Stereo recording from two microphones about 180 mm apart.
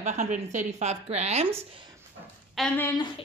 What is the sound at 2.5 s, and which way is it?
Speech, 5° left (ahead or behind).